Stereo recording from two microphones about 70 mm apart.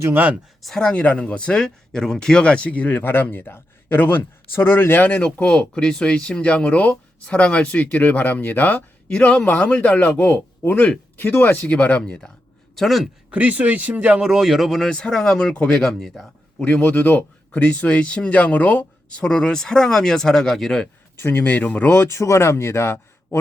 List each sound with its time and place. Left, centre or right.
0.8 s speech: centre
12.7 s speech: centre
13.3 s speech: centre
14.8 s speech: centre
16.6 s speech: left
21.2 s speech: left
21.9 s speech: left